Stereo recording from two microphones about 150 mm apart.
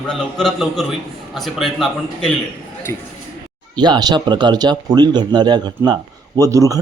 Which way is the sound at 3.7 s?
30° right (ahead or behind).